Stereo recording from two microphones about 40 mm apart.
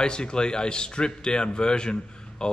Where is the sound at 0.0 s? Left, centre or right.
Left.